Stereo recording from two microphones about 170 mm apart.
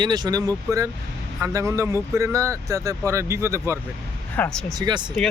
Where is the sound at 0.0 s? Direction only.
25° right (ahead or behind).